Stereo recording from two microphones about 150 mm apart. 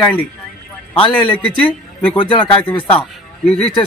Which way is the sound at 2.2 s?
35° left (ahead or behind).